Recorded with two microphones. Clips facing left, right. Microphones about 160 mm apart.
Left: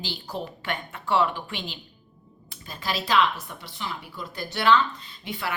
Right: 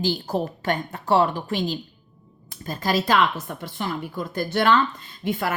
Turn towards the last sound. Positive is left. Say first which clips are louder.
# right 7 dB
turn(degrees=-45)  # may be behind; listen again after turning